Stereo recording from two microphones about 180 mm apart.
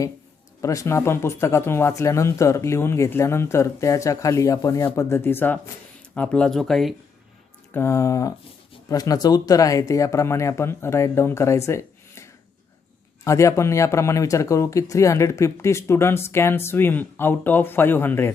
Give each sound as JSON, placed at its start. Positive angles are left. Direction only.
{"t": 0.6, "sound": "speech", "side_deg": 15}
{"t": 7.7, "sound": "speech", "side_deg": 15}